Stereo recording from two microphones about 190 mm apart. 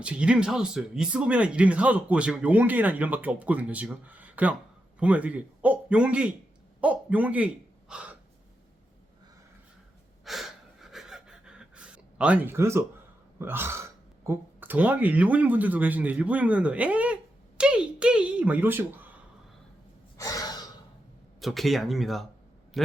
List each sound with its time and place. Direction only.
0.0 s a man's voice: 5° right (ahead or behind)
10.2 s gasp: centre (ahead or behind)
13.4 s speech: 10° right (ahead or behind)
20.1 s gasp: 20° left (ahead or behind)
21.4 s speech: centre (ahead or behind)